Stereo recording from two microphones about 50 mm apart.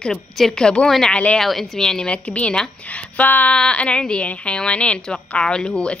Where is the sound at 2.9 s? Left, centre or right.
Left.